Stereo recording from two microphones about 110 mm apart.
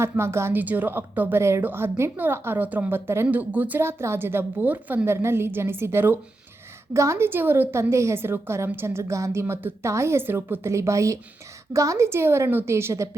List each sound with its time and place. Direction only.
0.0 s a woman's voice: 25° right (ahead or behind)